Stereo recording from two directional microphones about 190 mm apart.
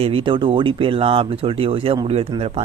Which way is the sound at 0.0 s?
30° right (ahead or behind).